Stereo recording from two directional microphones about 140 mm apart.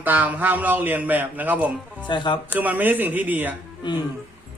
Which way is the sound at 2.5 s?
10° right (ahead or behind).